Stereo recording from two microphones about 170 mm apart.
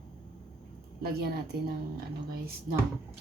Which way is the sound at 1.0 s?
65° right (ahead or behind).